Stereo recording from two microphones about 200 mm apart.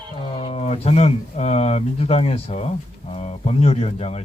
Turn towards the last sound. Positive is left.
turn(degrees=30)  # may be behind; listen again after turning